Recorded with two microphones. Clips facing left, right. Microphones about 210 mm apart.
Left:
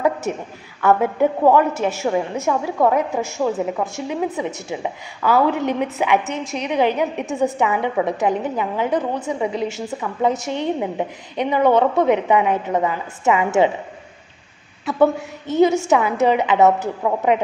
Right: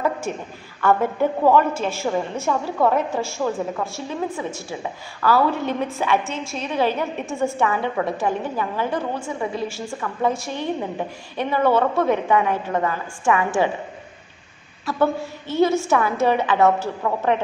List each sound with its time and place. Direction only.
0.0 s a sound: 15° left (ahead or behind)
1.4 s a woman's voice: 20° left (ahead or behind)
14.9 s a woman's voice: 20° left (ahead or behind)